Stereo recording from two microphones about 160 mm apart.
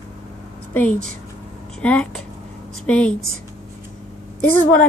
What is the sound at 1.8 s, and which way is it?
A woman's voice, 5° left (ahead or behind).